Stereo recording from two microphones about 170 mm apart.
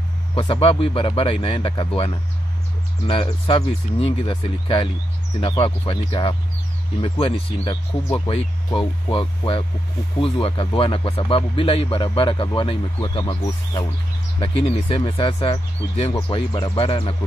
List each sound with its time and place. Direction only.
0.3 s speech: 30° left (ahead or behind)